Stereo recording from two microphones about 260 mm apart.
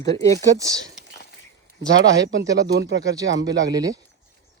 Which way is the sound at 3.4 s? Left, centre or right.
Centre.